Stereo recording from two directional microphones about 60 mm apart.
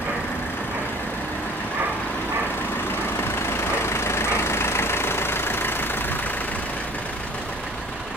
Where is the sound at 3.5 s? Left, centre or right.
Left.